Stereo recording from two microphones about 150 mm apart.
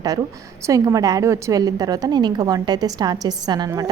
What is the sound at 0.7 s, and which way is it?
A woman's voice, 25° right (ahead or behind).